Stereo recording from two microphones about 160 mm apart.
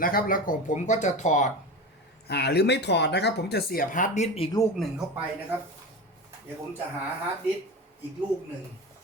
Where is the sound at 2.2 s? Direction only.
90° left; by 4.4 s 45° left (ahead or behind).